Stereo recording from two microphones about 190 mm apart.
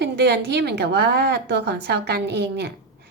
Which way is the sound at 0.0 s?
60° right (ahead or behind).